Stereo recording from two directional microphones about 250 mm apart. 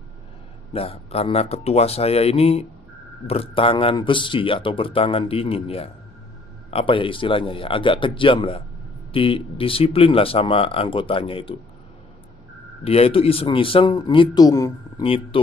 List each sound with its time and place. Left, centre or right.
0.7 s speech: left
12.8 s speech: left